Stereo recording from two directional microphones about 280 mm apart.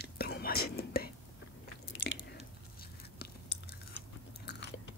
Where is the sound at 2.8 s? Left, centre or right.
Left.